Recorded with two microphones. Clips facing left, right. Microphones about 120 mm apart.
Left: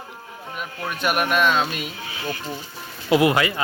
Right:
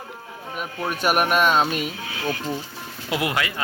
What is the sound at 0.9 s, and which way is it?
Speech, 40° right (ahead or behind).